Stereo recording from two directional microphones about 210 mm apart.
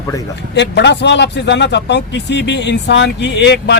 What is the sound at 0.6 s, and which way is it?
Speech, 55° left (ahead or behind).